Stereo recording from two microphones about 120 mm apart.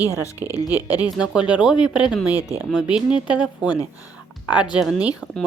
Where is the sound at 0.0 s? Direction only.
25° left (ahead or behind).